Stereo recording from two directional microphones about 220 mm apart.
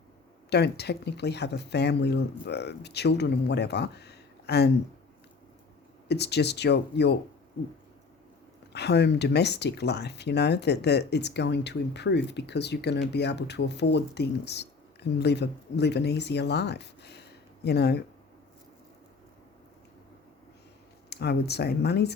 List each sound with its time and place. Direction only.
0.5 s speech: 50° left (ahead or behind)
6.1 s speech: 50° left (ahead or behind)
8.7 s speech: 50° left (ahead or behind)
21.1 s speech: 45° left (ahead or behind)